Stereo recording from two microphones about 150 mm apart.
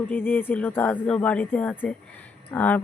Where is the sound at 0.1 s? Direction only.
15° left (ahead or behind).